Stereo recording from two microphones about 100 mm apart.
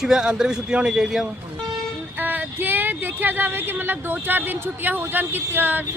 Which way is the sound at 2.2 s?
20° right (ahead or behind).